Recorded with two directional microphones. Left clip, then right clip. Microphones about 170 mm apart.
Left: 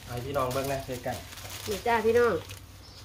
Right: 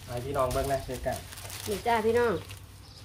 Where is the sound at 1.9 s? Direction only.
40° right (ahead or behind).